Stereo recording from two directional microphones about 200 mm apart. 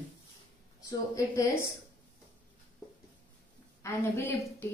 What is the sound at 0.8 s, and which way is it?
Speech, 15° left (ahead or behind).